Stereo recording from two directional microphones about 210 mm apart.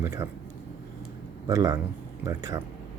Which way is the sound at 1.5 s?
15° right (ahead or behind).